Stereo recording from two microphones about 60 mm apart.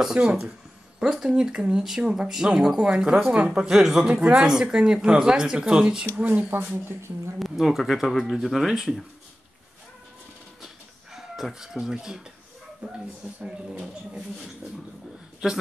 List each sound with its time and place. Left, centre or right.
0.0 s speech: centre
4.1 s speech: right
6.7 s speech: right
7.3 s speech: centre
11.1 s speech: centre
13.4 s speech: centre